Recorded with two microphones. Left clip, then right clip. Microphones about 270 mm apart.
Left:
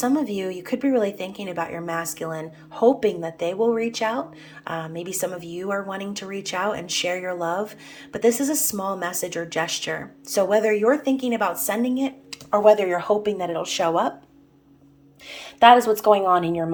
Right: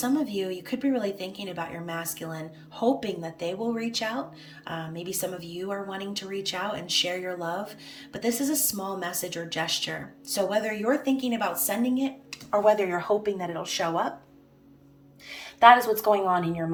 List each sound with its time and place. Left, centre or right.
0.0 s a woman's voice: centre
12.6 s speech: left
15.3 s speech: left